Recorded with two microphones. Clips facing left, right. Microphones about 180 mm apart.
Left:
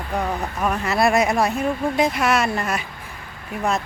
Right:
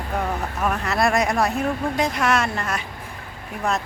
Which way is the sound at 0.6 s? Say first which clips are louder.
Left 2 dB; centre (ahead or behind).